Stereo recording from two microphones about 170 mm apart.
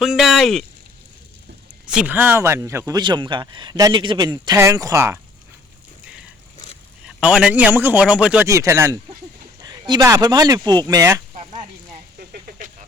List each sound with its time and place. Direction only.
0.0 s speech: centre (ahead or behind)
1.9 s speech: 10° right (ahead or behind)
7.0 s a man's voice: 5° right (ahead or behind)
8.4 s a man's voice: 20° right (ahead or behind)
12.2 s a sound: 60° right (ahead or behind)